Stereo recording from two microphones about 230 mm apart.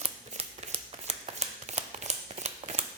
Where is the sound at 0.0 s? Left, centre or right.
Right.